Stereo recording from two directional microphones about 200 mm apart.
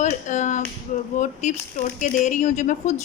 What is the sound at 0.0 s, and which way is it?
A woman's voice, 40° left (ahead or behind).